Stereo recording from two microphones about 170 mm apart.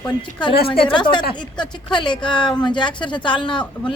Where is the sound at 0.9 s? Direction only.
30° left (ahead or behind).